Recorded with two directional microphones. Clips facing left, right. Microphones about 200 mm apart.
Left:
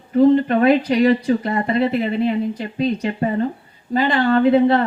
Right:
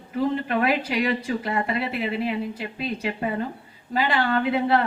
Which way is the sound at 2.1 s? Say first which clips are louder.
Left 7 dB; 5° right (ahead or behind).